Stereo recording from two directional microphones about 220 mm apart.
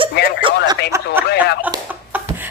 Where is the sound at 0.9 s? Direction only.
15° right (ahead or behind).